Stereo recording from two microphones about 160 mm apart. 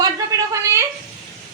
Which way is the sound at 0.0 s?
20° right (ahead or behind).